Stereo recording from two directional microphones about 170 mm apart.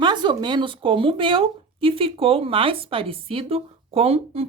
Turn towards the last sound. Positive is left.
turn(degrees=-35)  # may be behind; listen again after turning